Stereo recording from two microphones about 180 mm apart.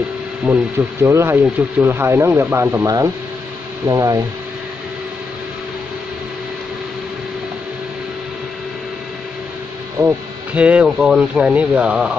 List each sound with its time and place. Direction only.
0.5 s speech: 15° right (ahead or behind)
9.9 s speech: 10° right (ahead or behind)